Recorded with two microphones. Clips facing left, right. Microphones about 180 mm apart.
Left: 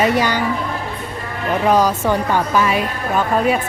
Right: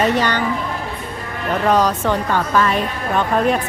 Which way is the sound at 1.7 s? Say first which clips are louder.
Left 1 dB; 10° left (ahead or behind).